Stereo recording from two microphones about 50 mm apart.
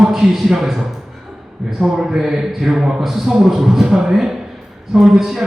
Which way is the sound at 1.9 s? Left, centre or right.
Centre.